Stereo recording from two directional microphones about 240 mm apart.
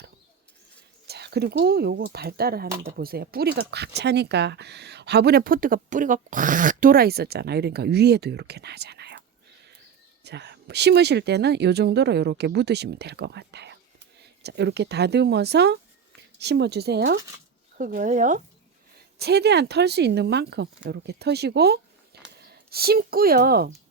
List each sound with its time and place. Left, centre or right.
1.0 s speech: right
10.2 s speech: right
19.2 s speech: right